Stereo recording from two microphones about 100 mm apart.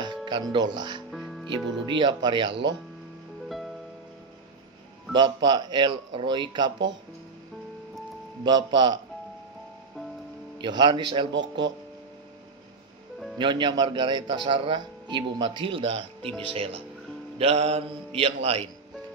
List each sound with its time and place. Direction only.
0.0 s speech: 50° right (ahead or behind)
1.1 s music: centre (ahead or behind)
1.5 s speech: 50° right (ahead or behind)
3.4 s music: centre (ahead or behind)
5.1 s speech: 45° right (ahead or behind)
8.5 s speech: 50° right (ahead or behind)
10.6 s speech: 50° right (ahead or behind)
13.4 s speech: 50° right (ahead or behind); by 16.8 s 70° right (ahead or behind)
17.4 s mantra: 90° right